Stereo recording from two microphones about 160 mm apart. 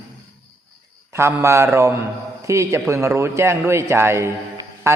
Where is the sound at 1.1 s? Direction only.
20° right (ahead or behind).